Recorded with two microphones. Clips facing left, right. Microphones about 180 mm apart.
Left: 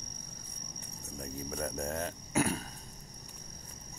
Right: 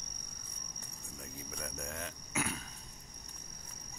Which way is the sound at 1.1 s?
40° left (ahead or behind).